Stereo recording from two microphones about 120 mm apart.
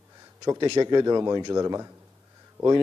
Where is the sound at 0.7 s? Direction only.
35° right (ahead or behind).